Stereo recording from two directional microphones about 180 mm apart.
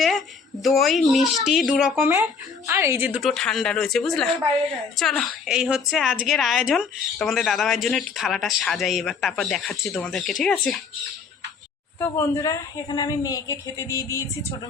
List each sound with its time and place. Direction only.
0.6 s a woman's voice: centre (ahead or behind)
2.0 s a woman's voice: 10° right (ahead or behind); by 10.8 s 5° left (ahead or behind)
11.9 s a woman's voice: 15° left (ahead or behind)